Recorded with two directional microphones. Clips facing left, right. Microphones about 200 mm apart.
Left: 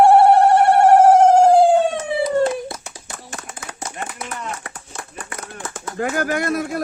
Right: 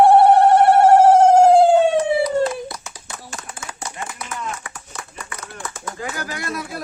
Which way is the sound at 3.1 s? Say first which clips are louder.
Even; 55° left (ahead or behind).